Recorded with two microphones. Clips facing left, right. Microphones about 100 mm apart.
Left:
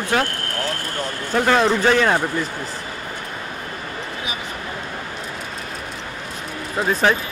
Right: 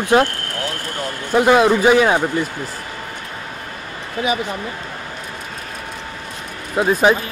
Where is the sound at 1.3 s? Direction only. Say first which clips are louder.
Right 4 dB; 10° right (ahead or behind).